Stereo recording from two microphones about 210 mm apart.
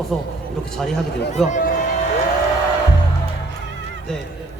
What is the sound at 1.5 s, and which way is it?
Speech, 40° left (ahead or behind).